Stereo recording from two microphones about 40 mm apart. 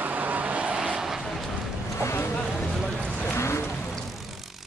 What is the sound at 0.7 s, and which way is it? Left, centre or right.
Vehicle, centre.